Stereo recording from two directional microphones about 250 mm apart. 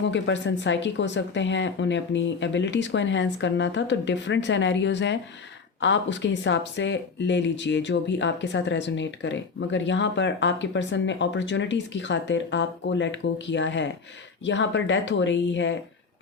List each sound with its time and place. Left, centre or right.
0.0 s speech: left